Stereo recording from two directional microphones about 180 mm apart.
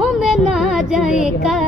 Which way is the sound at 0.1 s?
Centre (ahead or behind).